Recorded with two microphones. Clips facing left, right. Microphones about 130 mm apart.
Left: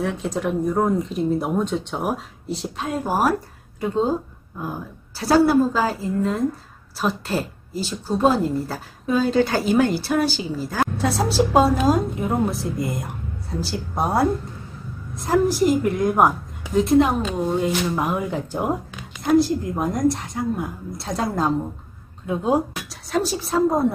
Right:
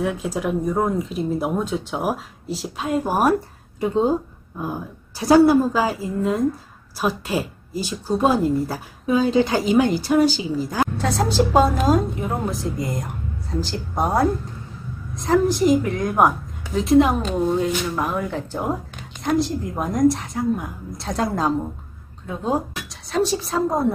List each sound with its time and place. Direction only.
0.0 s speech: 5° right (ahead or behind)
3.1 s a woman's voice: 15° right (ahead or behind)
11.0 s speech: 5° left (ahead or behind)
17.9 s speech: 15° left (ahead or behind)
19.2 s speech: centre (ahead or behind)